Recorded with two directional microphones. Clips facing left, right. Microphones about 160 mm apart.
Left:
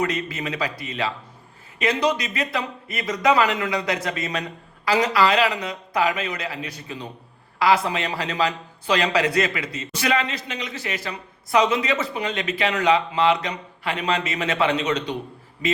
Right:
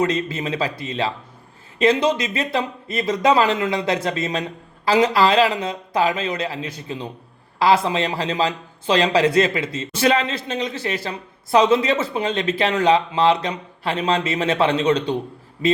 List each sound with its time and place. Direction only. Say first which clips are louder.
0.0 s a man's voice: right 4 dB; 25° right (ahead or behind)